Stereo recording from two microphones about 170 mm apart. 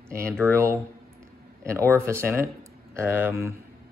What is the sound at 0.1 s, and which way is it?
Speech, 15° right (ahead or behind).